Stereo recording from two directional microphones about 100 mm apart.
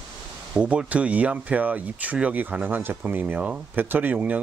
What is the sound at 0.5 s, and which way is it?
Speech, 10° right (ahead or behind).